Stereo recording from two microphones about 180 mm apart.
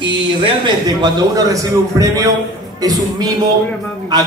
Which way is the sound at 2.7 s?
20° right (ahead or behind).